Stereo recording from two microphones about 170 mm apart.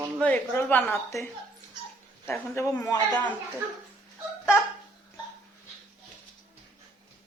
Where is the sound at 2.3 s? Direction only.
15° left (ahead or behind).